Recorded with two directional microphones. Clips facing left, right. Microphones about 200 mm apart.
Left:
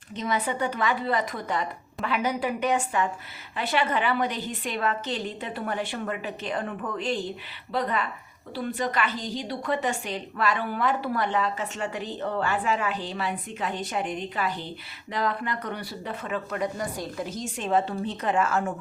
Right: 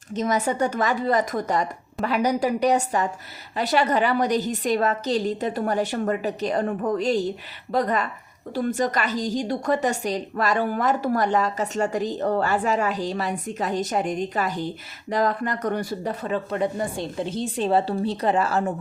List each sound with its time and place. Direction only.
0.1 s a woman's voice: 45° right (ahead or behind)